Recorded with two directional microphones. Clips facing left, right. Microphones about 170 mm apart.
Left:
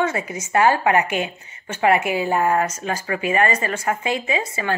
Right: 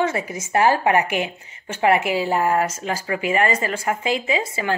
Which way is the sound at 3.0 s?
20° right (ahead or behind).